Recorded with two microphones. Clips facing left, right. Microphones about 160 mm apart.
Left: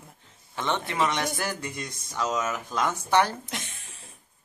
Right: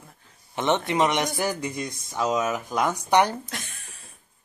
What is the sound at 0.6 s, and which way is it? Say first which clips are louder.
Speech: right 5 dB; 20° right (ahead or behind).